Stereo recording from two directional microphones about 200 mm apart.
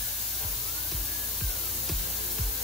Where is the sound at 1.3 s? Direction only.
Centre (ahead or behind).